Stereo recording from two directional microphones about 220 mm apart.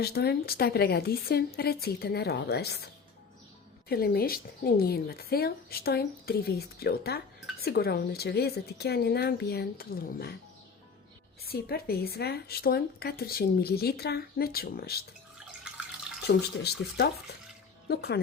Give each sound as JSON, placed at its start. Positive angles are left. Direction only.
{"t": 0.0, "sound": "speech", "side_deg": 45}
{"t": 11.4, "sound": "speech", "side_deg": 45}
{"t": 16.2, "sound": "speech", "side_deg": 50}